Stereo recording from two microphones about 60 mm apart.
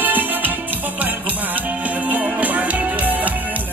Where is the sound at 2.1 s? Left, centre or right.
Right.